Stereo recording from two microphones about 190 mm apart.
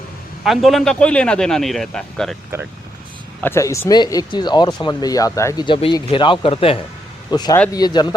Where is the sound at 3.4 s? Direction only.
15° left (ahead or behind).